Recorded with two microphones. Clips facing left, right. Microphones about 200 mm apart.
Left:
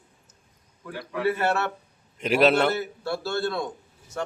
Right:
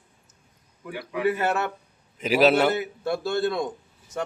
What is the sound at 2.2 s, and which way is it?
Speech, centre (ahead or behind).